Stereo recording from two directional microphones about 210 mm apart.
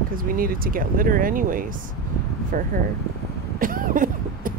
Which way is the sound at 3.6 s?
40° right (ahead or behind).